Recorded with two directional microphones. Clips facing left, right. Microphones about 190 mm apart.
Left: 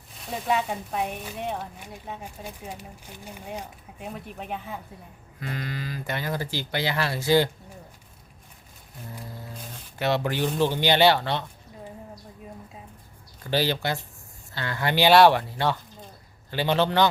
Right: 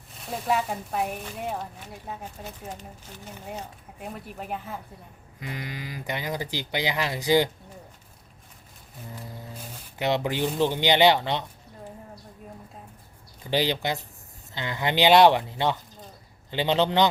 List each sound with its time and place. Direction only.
0.3 s speech: centre (ahead or behind)
2.4 s speech: 10° left (ahead or behind)
4.0 s speech: centre (ahead or behind)
5.4 s speech: 15° right (ahead or behind)
10.0 s speech: 15° right (ahead or behind)
13.4 s speech: 15° right (ahead or behind)